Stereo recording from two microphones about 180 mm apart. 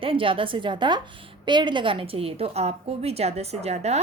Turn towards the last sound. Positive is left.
turn(degrees=-35)  # may be behind; listen again after turning